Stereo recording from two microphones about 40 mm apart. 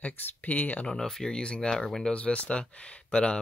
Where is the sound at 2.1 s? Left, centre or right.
Left.